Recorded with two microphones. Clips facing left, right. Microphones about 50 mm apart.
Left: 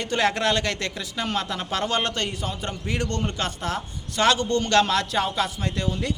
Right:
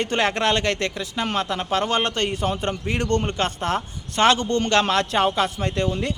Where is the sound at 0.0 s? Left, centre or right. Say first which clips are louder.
Right 2 dB; right.